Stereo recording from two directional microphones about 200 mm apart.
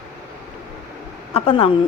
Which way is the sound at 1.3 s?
30° left (ahead or behind).